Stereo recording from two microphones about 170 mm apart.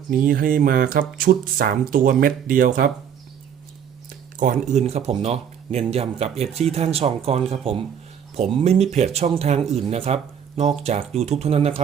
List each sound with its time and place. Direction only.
0.1 s speech: 55° right (ahead or behind)
4.4 s speech: 45° right (ahead or behind)